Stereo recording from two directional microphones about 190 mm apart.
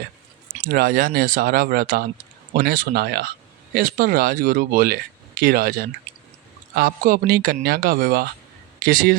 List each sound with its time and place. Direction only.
0.7 s speech: 50° right (ahead or behind)